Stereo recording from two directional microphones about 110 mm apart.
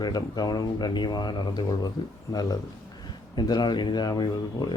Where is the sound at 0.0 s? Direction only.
40° left (ahead or behind).